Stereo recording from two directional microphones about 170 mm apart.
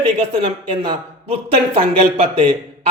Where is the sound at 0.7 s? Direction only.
25° right (ahead or behind).